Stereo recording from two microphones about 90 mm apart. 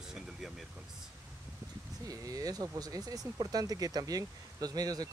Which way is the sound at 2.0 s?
40° right (ahead or behind).